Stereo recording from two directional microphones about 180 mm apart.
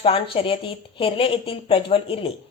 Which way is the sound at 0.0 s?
30° left (ahead or behind).